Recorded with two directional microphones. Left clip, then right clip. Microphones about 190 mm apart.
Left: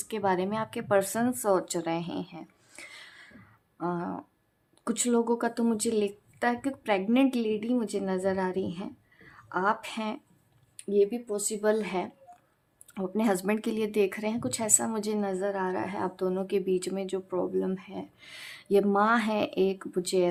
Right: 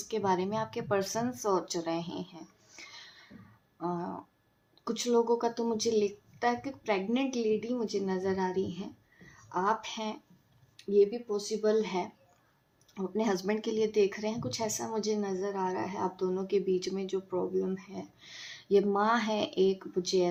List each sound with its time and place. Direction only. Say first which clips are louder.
0.1 s a woman's voice: left 2 dB; 40° left (ahead or behind)